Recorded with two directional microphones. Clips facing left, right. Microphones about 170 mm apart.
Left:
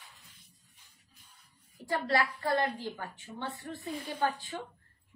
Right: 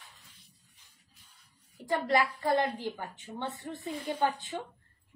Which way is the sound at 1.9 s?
20° right (ahead or behind).